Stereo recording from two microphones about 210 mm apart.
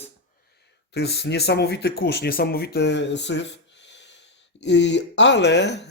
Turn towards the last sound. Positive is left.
turn(degrees=55)  # may be behind; listen again after turning